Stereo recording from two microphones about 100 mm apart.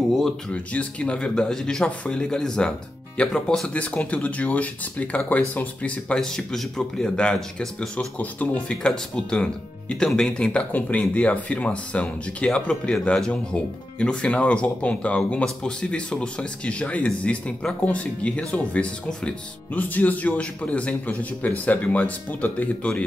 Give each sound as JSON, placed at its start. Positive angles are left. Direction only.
{"t": 0.1, "sound": "speech", "side_deg": 5}